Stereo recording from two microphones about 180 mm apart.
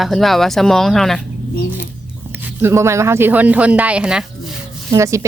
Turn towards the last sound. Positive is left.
turn(degrees=-15)  # may be behind; listen again after turning